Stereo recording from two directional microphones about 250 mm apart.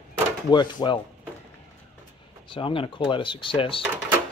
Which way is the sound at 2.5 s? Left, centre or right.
Left.